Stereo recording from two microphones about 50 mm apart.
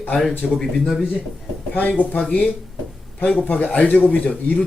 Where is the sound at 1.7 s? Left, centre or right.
Left.